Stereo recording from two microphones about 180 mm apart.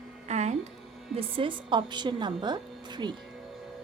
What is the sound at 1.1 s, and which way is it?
A woman's voice, 30° right (ahead or behind).